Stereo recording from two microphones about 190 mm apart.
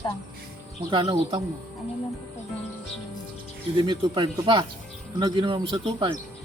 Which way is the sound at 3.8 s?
25° right (ahead or behind).